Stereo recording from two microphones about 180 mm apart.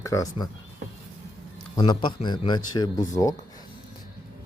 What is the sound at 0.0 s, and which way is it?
Speech, 20° left (ahead or behind).